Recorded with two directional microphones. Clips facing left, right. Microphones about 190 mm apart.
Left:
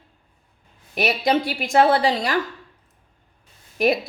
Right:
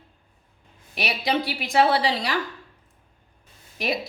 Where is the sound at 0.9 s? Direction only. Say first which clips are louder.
Left 5 dB; 50° left (ahead or behind).